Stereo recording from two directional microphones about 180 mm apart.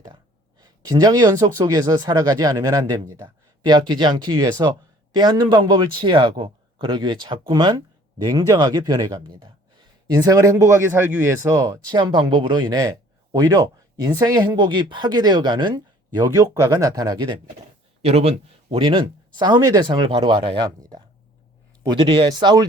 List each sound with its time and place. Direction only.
0.6 s speech: 20° right (ahead or behind)